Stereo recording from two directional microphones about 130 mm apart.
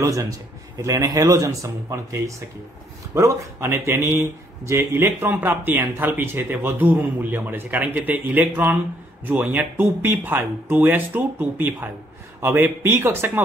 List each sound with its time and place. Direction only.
0.0 s speech: 25° right (ahead or behind)